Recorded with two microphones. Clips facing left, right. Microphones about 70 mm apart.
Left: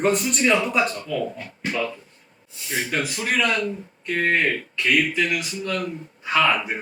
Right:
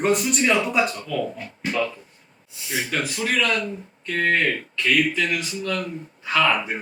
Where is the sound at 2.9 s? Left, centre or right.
Centre.